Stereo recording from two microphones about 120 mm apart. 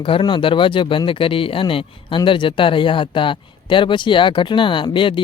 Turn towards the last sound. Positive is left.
turn(degrees=45)  # may be behind; listen again after turning